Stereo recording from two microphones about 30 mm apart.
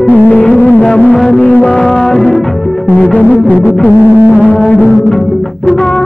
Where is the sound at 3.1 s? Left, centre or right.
Left.